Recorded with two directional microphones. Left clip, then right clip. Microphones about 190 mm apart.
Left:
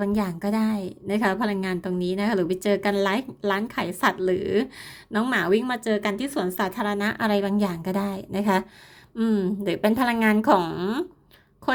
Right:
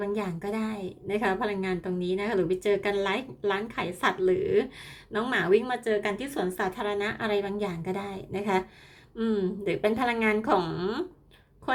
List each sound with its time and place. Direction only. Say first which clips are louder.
0.0 s a woman's voice: left 4 dB; 40° left (ahead or behind)